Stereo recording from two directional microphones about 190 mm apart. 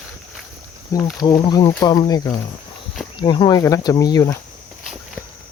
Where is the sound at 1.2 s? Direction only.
20° left (ahead or behind).